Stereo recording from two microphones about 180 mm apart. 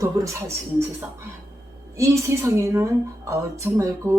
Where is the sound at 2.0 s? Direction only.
15° right (ahead or behind).